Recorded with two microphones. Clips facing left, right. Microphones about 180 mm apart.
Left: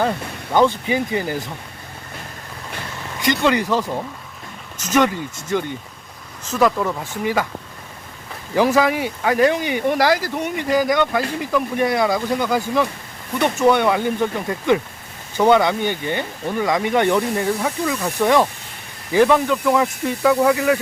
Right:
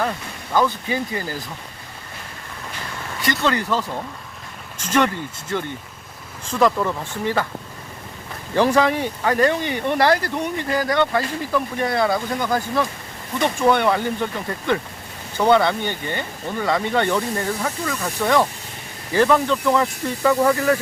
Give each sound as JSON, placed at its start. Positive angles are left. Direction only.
{"t": 0.5, "sound": "speech", "side_deg": 20}
{"t": 3.2, "sound": "speech", "side_deg": 20}
{"t": 8.5, "sound": "speech", "side_deg": 10}